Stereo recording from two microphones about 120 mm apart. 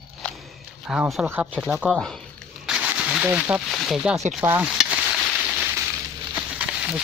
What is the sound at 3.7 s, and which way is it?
Speech, centre (ahead or behind).